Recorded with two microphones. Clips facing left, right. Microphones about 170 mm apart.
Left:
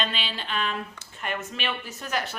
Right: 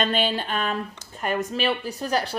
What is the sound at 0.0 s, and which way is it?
A woman's voice, 45° right (ahead or behind).